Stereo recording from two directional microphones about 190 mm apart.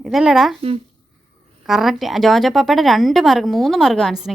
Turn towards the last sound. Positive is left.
turn(degrees=0)  # may be behind; listen again after turning